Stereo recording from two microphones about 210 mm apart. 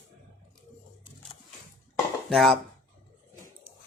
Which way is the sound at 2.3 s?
Centre (ahead or behind).